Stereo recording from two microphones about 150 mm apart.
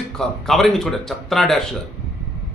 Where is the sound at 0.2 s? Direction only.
Centre (ahead or behind).